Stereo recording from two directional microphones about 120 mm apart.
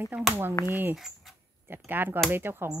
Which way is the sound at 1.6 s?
20° right (ahead or behind).